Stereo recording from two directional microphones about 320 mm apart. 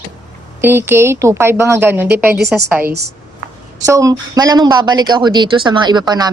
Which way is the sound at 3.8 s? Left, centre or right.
Centre.